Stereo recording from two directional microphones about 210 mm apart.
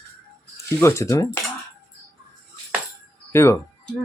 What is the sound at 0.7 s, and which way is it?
Speech, 15° left (ahead or behind).